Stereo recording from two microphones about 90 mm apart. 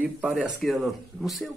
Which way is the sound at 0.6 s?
Centre (ahead or behind).